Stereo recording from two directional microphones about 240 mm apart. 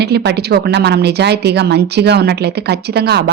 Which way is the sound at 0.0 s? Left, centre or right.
Right.